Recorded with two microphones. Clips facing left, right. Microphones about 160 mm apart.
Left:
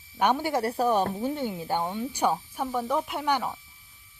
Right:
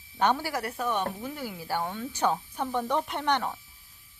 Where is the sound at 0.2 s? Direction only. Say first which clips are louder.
Left 2 dB; 15° left (ahead or behind).